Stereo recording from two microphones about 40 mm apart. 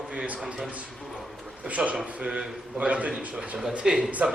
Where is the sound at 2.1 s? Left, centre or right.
Right.